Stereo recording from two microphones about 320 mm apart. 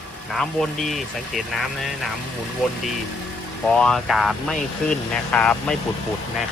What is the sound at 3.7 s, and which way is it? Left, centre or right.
Speech, centre.